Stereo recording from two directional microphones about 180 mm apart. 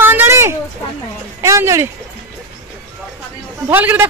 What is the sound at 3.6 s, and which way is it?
Speech, 10° right (ahead or behind).